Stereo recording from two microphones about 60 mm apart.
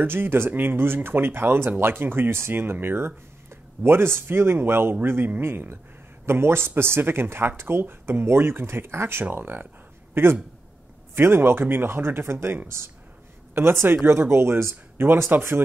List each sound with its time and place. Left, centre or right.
0.0 s speech: right
9.3 s speech: right
10.2 s speech: right